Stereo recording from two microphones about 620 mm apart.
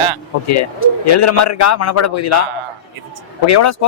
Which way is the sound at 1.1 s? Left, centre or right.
Left.